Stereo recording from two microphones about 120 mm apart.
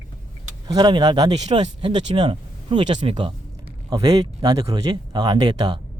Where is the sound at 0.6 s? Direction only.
35° right (ahead or behind).